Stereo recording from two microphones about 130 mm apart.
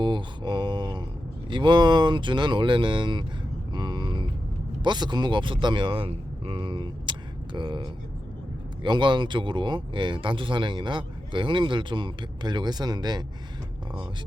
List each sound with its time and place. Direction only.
0.0 s mantra: 35° right (ahead or behind)
1.5 s speech: 35° right (ahead or behind)
3.7 s vehicle: 35° right (ahead or behind)
4.8 s speech: 35° right (ahead or behind)